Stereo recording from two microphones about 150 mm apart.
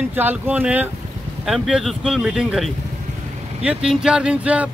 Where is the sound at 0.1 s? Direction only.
10° right (ahead or behind).